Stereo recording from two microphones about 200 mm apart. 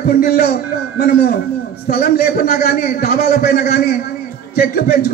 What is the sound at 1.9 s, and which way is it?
A man's voice, 50° left (ahead or behind).